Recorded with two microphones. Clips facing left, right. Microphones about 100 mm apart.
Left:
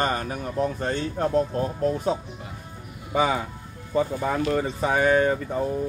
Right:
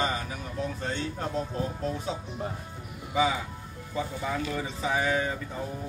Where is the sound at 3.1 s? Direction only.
55° left (ahead or behind).